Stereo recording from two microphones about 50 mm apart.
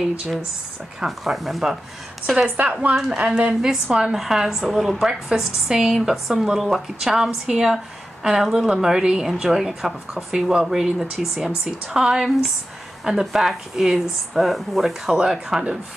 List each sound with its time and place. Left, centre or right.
1.0 s speech: centre
2.2 s speech: centre
2.5 s a woman's voice: right; by 15.6 s centre